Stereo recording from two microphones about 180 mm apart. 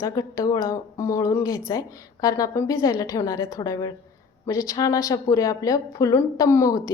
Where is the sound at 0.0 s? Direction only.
20° left (ahead or behind).